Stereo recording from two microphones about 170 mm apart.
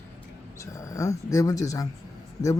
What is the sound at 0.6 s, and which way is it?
Speech, 20° left (ahead or behind).